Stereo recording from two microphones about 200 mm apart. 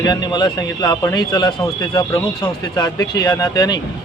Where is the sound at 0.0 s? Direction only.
20° left (ahead or behind).